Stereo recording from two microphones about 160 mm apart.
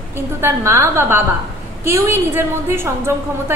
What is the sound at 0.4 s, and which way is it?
A woman's voice, 15° right (ahead or behind).